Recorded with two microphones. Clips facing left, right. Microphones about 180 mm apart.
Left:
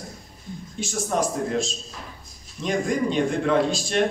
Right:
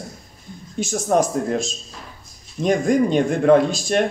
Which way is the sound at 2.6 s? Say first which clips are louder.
Right 6 dB; 50° right (ahead or behind).